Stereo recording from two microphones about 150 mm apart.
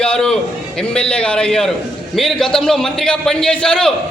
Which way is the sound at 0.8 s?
5° left (ahead or behind).